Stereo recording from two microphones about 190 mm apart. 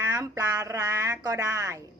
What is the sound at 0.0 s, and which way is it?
A woman's voice, 15° right (ahead or behind).